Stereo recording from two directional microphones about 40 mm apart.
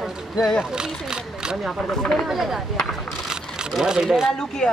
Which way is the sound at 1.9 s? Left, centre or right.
Centre.